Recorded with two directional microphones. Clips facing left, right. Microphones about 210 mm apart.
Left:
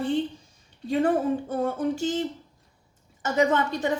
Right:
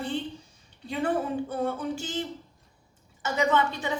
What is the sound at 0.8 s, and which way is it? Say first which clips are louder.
Speech: left 5 dB; 45° left (ahead or behind).